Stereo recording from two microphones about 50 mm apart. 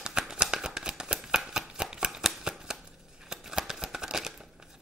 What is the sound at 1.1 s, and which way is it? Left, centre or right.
Shuffling cards, right.